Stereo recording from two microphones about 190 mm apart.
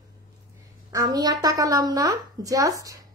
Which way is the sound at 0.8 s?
20° right (ahead or behind).